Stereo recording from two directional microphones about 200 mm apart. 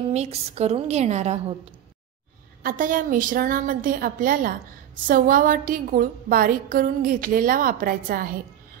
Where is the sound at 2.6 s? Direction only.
45° right (ahead or behind).